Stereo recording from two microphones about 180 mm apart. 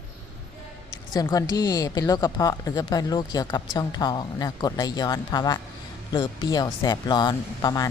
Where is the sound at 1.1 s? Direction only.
20° left (ahead or behind).